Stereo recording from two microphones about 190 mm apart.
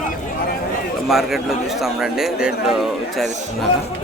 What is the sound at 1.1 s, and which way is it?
A man's voice, centre (ahead or behind).